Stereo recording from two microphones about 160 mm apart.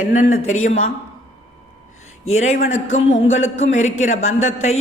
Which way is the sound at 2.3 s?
45° left (ahead or behind).